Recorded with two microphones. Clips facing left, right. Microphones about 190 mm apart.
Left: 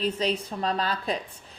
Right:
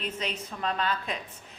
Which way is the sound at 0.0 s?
35° left (ahead or behind).